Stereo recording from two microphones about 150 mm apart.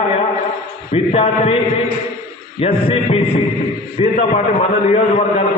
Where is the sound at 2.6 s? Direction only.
40° left (ahead or behind).